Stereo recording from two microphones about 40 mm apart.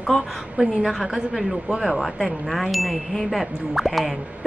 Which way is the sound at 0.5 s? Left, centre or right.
Centre.